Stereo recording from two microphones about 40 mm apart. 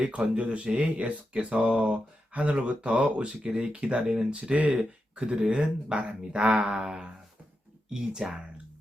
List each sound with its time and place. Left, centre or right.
0.0 s speech: right